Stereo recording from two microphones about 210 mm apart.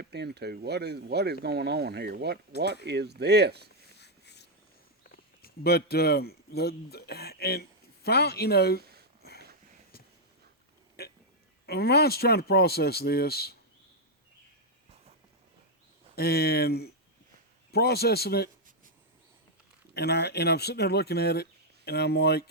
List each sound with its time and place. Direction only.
0.0 s speech: 50° right (ahead or behind)
4.0 s a sound: 55° left (ahead or behind)
5.1 s speech: 45° left (ahead or behind)
11.0 s a sound: 50° left (ahead or behind)
11.6 s speech: 50° left (ahead or behind)
16.1 s speech: 50° left (ahead or behind)
19.9 s speech: 50° left (ahead or behind)